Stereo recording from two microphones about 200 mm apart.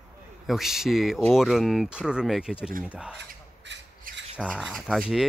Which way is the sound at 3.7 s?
65° right (ahead or behind).